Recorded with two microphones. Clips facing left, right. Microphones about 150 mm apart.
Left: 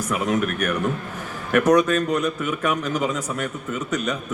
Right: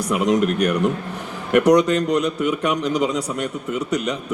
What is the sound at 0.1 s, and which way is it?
Speech, 15° right (ahead or behind).